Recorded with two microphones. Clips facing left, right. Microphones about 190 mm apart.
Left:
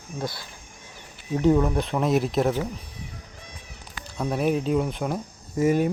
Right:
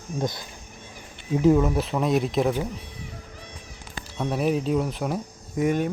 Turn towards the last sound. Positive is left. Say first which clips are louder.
# left 2 dB
turn(degrees=5)  # may be behind; listen again after turning